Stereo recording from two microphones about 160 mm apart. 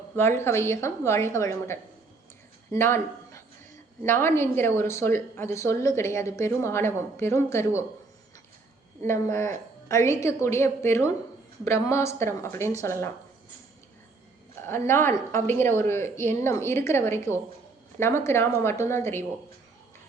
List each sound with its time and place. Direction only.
0.2 s a woman's voice: 15° left (ahead or behind)
9.0 s a woman's voice: 15° left (ahead or behind)
14.7 s a woman's voice: 15° left (ahead or behind)